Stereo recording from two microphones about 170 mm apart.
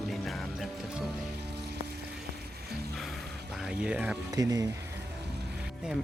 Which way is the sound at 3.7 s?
5° right (ahead or behind).